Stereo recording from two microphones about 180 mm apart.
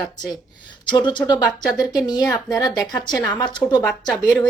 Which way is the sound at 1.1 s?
25° left (ahead or behind).